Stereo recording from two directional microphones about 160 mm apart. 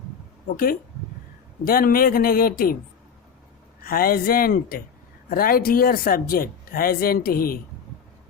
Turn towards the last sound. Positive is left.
turn(degrees=65)  # may be behind; listen again after turning